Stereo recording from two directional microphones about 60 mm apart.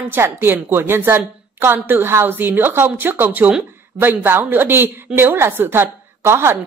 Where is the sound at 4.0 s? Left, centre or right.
Right.